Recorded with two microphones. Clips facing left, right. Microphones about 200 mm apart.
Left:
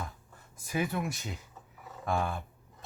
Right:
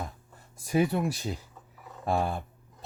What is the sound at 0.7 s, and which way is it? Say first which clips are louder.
Speech: right 6 dB; 35° right (ahead or behind).